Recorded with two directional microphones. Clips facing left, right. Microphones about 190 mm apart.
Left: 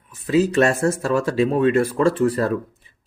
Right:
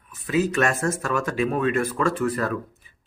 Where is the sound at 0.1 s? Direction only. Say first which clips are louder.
Left 5 dB; 30° left (ahead or behind).